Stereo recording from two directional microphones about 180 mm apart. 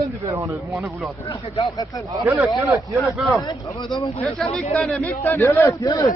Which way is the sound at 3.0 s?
Centre (ahead or behind).